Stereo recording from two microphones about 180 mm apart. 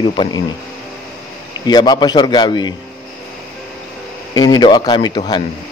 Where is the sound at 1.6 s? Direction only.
25° left (ahead or behind).